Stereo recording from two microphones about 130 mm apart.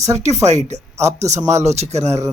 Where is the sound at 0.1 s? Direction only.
60° right (ahead or behind).